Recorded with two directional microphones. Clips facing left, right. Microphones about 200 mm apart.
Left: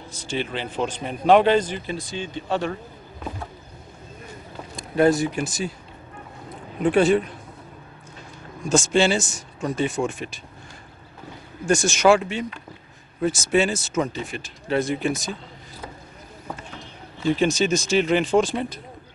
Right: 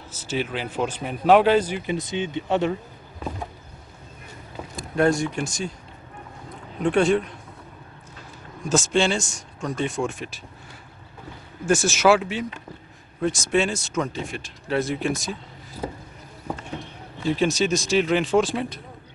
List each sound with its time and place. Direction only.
0.1 s a man's voice: 5° right (ahead or behind)
4.7 s speech: 5° left (ahead or behind)
6.8 s speech: 5° left (ahead or behind)
8.6 s speech: centre (ahead or behind)
11.6 s speech: centre (ahead or behind)
15.8 s boat: 25° right (ahead or behind)
17.3 s speech: centre (ahead or behind)